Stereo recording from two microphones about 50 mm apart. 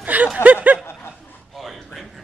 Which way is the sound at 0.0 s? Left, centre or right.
Right.